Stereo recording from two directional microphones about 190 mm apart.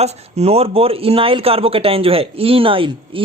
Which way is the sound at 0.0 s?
35° right (ahead or behind).